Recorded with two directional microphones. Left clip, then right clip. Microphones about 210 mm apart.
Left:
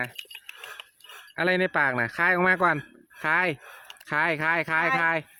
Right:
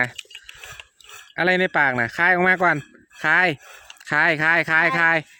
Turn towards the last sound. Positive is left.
turn(degrees=-30)  # may be behind; listen again after turning